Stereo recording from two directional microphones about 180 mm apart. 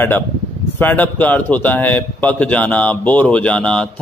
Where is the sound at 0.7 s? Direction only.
10° left (ahead or behind).